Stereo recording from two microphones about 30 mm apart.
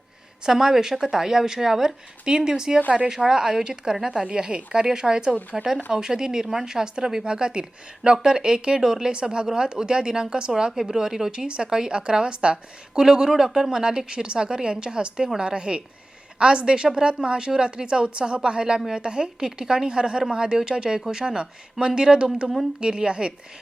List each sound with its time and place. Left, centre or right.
0.4 s a woman's voice: centre
7.3 s speech: right
9.1 s speech: right
10.7 s a woman's voice: centre
11.3 s a woman's voice: right
13.0 s a woman's voice: right